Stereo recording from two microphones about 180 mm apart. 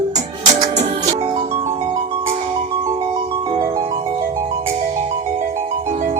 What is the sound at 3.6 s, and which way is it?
Music, 30° right (ahead or behind).